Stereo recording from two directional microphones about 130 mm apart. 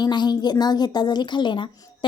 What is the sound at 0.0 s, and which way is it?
A woman's voice, 35° left (ahead or behind).